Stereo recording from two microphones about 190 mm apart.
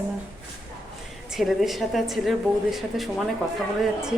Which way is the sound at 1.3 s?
Centre (ahead or behind).